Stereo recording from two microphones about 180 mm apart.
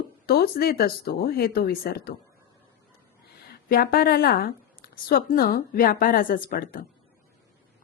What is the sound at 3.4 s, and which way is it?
Speech, 55° left (ahead or behind).